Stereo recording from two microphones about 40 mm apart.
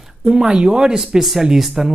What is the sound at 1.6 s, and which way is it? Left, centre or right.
Speech, centre.